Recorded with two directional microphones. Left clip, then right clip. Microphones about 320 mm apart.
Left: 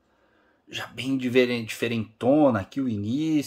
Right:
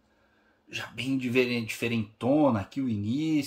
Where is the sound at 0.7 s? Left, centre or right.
Centre.